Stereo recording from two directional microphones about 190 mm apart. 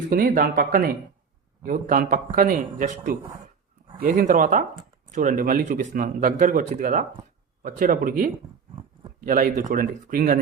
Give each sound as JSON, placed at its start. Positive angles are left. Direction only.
{"t": 0.1, "sound": "speech", "side_deg": -45}